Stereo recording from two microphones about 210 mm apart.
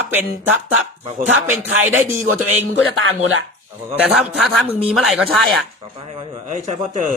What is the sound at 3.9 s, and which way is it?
Speech, 5° right (ahead or behind).